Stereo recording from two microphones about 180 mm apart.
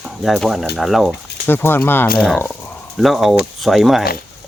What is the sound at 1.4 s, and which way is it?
Speech, 10° left (ahead or behind).